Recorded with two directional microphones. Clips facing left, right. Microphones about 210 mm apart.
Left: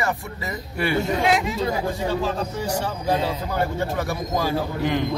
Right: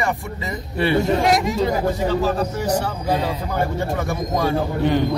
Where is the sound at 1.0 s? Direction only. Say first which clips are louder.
Right 3 dB; 40° right (ahead or behind).